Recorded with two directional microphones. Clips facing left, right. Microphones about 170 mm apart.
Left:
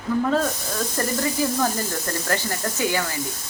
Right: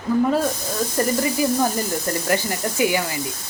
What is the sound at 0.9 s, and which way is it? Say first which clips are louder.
Speech: right 3 dB; 15° right (ahead or behind).